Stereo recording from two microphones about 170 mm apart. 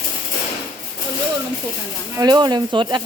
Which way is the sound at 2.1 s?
25° right (ahead or behind).